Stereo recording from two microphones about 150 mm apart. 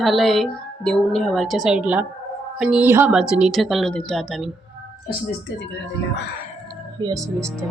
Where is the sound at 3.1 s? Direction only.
5° right (ahead or behind).